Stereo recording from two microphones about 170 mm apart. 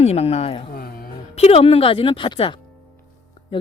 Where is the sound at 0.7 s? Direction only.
60° left (ahead or behind).